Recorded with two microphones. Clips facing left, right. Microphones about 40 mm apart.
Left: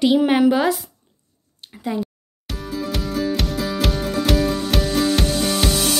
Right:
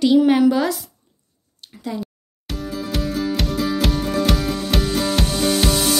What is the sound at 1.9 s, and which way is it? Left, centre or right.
Speech, left.